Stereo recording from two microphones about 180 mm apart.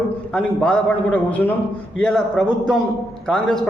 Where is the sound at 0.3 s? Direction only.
5° left (ahead or behind).